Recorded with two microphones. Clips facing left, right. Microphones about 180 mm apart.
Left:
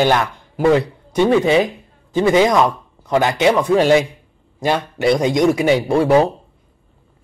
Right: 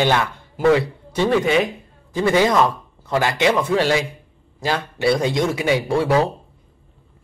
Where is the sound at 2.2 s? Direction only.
20° left (ahead or behind).